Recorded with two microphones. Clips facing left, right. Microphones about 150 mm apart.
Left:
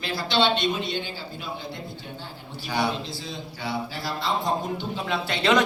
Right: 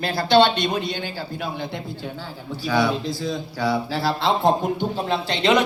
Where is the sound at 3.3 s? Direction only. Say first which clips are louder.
Right 6 dB; 90° right; by 4.5 s 70° right (ahead or behind).